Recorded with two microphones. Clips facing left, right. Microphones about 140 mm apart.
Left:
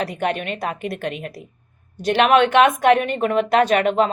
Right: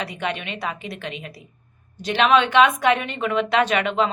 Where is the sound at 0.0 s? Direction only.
50° left (ahead or behind).